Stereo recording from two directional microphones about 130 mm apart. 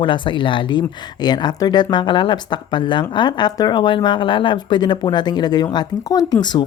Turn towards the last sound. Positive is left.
turn(degrees=35)  # may be behind; listen again after turning